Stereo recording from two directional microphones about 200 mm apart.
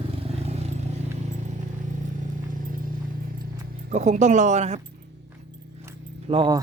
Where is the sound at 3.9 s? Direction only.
35° right (ahead or behind).